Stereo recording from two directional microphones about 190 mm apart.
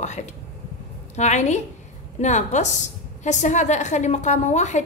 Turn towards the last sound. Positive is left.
turn(degrees=40)  # may be behind; listen again after turning